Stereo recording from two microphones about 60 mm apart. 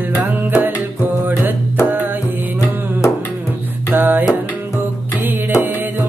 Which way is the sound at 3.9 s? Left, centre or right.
Right.